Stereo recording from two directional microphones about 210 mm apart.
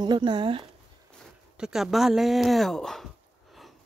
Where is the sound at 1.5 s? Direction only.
5° right (ahead or behind).